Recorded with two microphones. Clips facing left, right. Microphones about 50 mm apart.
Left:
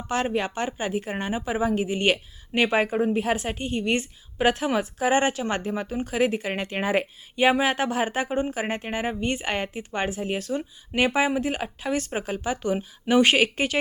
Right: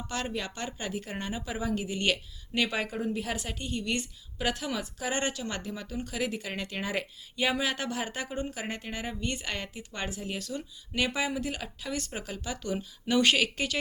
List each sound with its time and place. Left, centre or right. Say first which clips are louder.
0.1 s speech: left 10 dB; left